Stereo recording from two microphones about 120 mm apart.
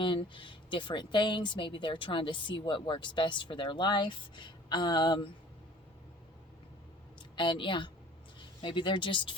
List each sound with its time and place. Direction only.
0.0 s speech: 45° left (ahead or behind)
7.2 s a woman's voice: 40° left (ahead or behind)